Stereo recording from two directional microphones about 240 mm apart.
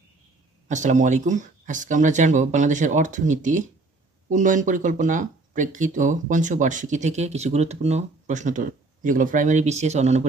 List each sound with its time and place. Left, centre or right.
0.7 s speech: right